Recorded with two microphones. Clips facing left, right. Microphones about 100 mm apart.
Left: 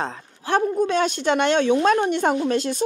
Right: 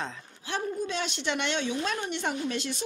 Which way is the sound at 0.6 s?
55° left (ahead or behind).